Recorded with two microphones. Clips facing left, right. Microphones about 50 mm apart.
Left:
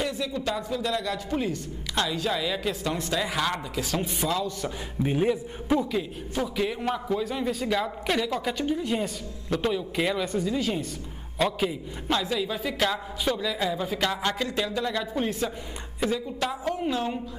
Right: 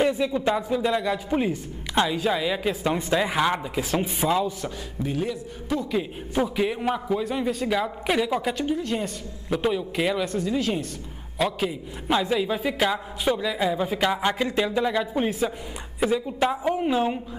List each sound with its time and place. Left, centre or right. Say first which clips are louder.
0.0 s speech: right 7 dB; right
5.0 s a man's voice: left 3 dB; left
6.3 s a man's voice: right 4 dB; centre
8.8 s a woman's voice: even; centre
9.5 s a man's voice: right 2 dB; centre
12.1 s a man's voice: right 4 dB; centre